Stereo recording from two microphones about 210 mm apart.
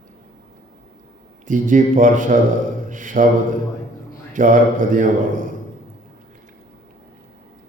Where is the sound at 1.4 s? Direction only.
40° right (ahead or behind).